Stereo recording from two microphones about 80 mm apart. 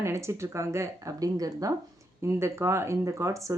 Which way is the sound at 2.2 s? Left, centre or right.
Right.